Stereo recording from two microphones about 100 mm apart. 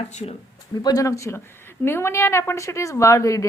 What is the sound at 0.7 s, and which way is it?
A woman's voice, 40° left (ahead or behind).